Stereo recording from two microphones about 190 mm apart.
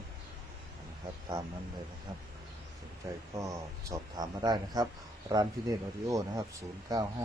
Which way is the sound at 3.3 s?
15° right (ahead or behind).